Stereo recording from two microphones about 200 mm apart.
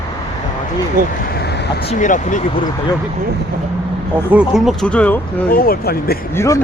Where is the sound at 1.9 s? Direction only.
40° left (ahead or behind).